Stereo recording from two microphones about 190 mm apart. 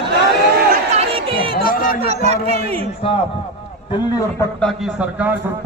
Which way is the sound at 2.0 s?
35° right (ahead or behind).